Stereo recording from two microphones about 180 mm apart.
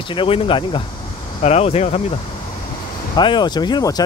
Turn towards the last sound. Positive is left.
turn(degrees=20)  # may be behind; listen again after turning